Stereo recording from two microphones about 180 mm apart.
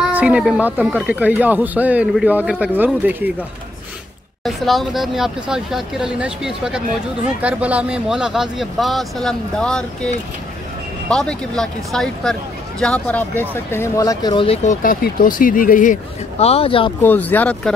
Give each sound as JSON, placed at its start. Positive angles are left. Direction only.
{"t": 0.1, "sound": "speech", "side_deg": -5}
{"t": 4.5, "sound": "speech", "side_deg": 0}
{"t": 17.0, "sound": "speech", "side_deg": 10}